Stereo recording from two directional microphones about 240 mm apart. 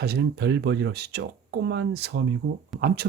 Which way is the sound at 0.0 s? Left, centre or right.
Right.